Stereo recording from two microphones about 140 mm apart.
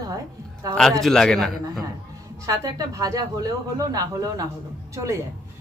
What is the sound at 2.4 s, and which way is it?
A man's voice, 25° right (ahead or behind).